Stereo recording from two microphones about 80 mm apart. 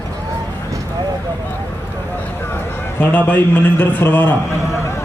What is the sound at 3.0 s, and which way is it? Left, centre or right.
A man's voice, centre.